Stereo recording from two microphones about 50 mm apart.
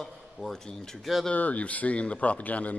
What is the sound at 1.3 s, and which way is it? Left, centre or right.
Speech, left.